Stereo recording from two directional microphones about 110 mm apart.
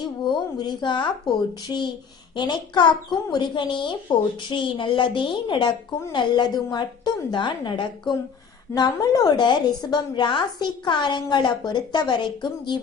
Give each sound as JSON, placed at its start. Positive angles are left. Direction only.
{"t": 0.3, "sound": "a woman's voice", "side_deg": 40}